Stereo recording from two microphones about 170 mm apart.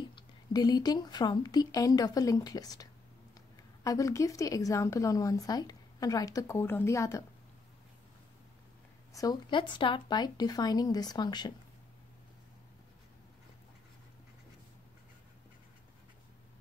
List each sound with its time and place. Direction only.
0.1 s a woman's voice: 25° left (ahead or behind)
9.1 s a woman's voice: 20° left (ahead or behind)